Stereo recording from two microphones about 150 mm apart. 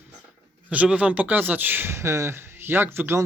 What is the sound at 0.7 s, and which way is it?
Speech, 10° right (ahead or behind).